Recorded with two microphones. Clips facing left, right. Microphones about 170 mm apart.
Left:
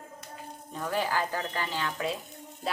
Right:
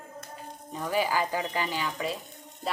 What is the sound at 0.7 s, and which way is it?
Speech, 10° right (ahead or behind).